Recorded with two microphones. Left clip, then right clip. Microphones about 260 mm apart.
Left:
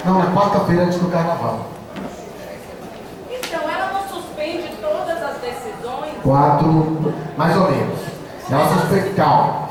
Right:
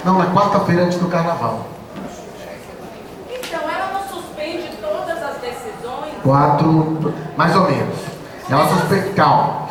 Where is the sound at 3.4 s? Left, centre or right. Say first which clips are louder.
Even; centre.